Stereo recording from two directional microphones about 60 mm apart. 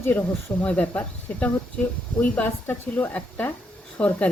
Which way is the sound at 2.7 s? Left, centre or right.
Left.